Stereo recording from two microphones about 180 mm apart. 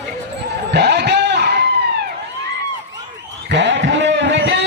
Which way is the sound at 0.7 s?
65° right (ahead or behind).